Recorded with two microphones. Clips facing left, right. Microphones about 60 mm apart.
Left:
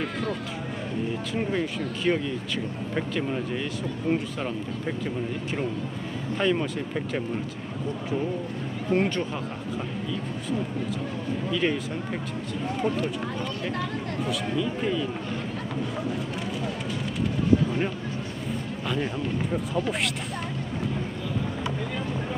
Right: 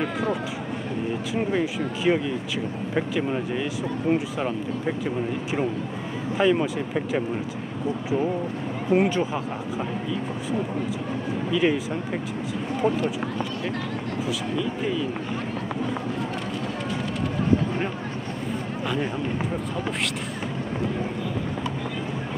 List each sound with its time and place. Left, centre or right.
0.0 s speech: centre
8.9 s speech: centre
11.5 s speech: centre
12.8 s speech: centre
14.2 s speech: centre